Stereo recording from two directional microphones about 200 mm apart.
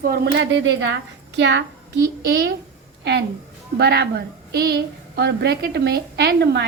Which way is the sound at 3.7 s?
55° right (ahead or behind).